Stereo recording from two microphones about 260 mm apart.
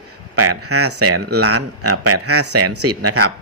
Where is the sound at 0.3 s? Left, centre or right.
Right.